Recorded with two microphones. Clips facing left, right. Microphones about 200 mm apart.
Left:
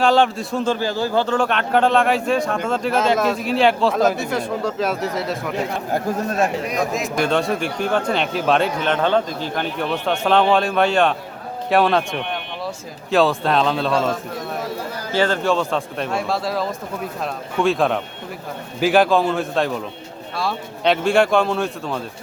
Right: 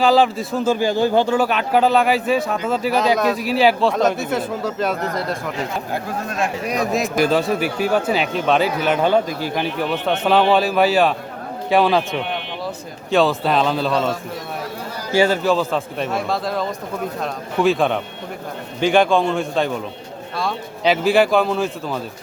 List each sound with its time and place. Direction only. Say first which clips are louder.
0.0 s a man's voice: right 1 dB; centre (ahead or behind)
5.9 s speech: left 4 dB; 40° left (ahead or behind)
7.2 s a man's voice: right 1 dB; 5° right (ahead or behind)